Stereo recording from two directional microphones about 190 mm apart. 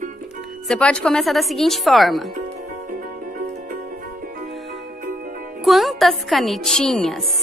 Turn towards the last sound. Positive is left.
turn(degrees=0)  # may be behind; listen again after turning